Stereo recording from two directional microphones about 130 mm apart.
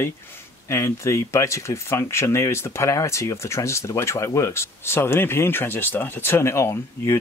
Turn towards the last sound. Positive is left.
turn(degrees=20)  # may be behind; listen again after turning